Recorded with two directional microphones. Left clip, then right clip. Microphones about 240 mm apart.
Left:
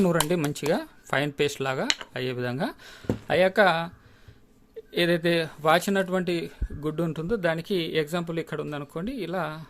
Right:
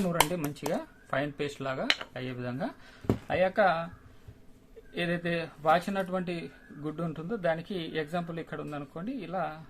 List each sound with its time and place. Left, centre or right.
0.7 s speech: left
4.9 s speech: left